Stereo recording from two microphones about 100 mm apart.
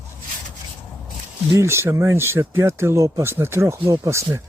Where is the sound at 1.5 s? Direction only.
25° right (ahead or behind).